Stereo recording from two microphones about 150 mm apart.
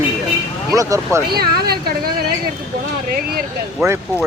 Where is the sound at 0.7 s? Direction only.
20° right (ahead or behind).